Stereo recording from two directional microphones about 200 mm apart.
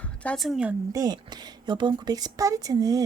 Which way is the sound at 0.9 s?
20° right (ahead or behind).